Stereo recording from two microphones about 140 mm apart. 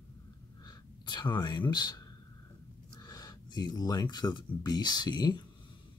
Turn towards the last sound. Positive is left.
turn(degrees=30)  # may be behind; listen again after turning